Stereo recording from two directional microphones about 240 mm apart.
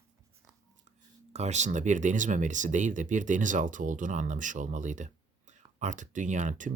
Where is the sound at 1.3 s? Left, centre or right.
Right.